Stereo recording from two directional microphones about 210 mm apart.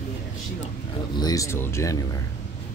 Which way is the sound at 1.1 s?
15° left (ahead or behind).